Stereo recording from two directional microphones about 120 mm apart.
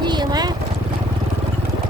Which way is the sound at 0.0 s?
35° right (ahead or behind).